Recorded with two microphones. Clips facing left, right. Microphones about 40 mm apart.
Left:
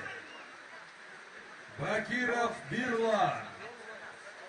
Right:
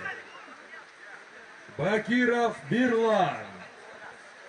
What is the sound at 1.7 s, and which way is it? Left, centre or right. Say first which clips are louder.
A man's voice: right 7 dB; right.